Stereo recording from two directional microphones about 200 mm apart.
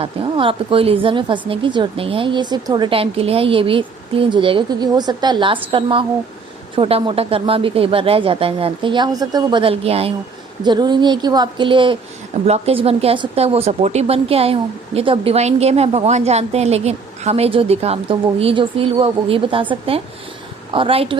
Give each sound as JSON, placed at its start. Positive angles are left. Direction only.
{"t": 0.0, "sound": "speech", "side_deg": -25}